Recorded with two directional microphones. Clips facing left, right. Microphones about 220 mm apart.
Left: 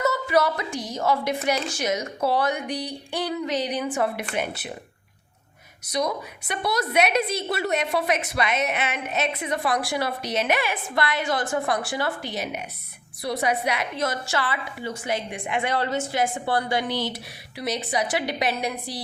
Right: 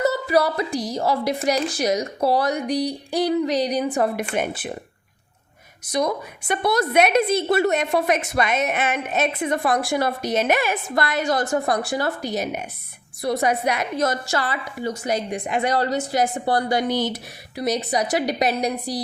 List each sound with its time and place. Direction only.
0.0 s a woman's voice: 35° right (ahead or behind)
4.4 s a woman's voice: 50° right (ahead or behind)
6.5 s a woman's voice: 50° right (ahead or behind)